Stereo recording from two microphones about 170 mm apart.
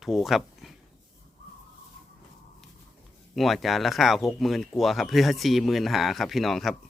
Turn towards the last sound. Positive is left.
turn(degrees=0)  # may be behind; listen again after turning